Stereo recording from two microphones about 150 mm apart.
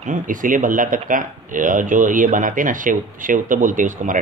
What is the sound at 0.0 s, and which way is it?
Speech, 60° right (ahead or behind).